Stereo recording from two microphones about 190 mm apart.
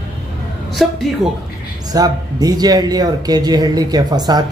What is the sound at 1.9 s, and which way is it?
Speech, 20° right (ahead or behind).